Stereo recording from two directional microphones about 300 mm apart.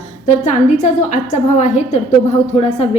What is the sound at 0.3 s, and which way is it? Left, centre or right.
A woman's voice, left.